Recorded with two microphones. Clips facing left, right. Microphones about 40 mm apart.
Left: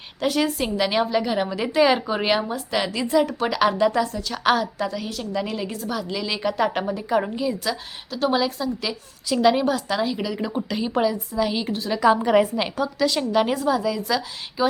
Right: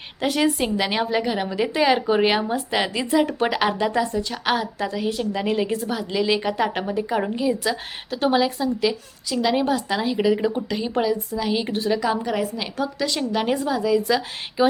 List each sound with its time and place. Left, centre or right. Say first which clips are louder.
0.2 s a woman's voice: right 1 dB; centre
9.3 s a woman's voice: left 4 dB; centre
9.6 s a woman's voice: even; centre
10.4 s a woman's voice: right 2 dB; centre
12.3 s a woman's voice: left 6 dB; left
12.7 s a woman's voice: left 2 dB; centre
14.6 s speech: right 3 dB; centre